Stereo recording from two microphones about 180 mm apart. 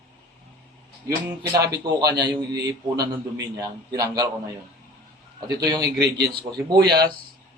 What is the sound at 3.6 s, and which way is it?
Speech, 20° right (ahead or behind).